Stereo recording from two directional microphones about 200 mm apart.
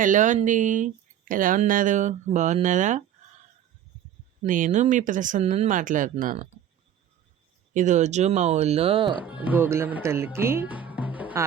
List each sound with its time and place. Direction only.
0.0 s speech: 40° right (ahead or behind)
4.4 s speech: 40° right (ahead or behind)
7.7 s speech: 40° right (ahead or behind)
9.1 s speech: 10° right (ahead or behind)